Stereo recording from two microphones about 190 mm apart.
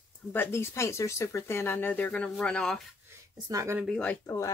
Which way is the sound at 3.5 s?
15° right (ahead or behind).